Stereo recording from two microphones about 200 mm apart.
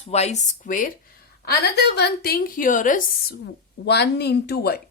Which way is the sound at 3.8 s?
55° left (ahead or behind).